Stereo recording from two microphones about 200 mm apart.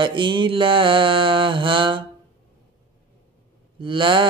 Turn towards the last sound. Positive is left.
turn(degrees=-25)  # may be behind; listen again after turning